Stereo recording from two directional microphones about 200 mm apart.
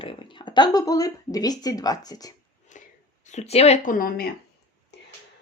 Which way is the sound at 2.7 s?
40° left (ahead or behind).